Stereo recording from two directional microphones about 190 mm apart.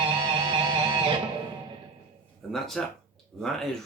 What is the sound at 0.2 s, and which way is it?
Music, 20° right (ahead or behind).